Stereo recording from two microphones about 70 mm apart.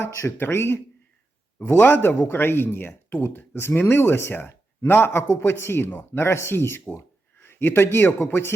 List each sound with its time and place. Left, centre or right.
0.0 s speech: left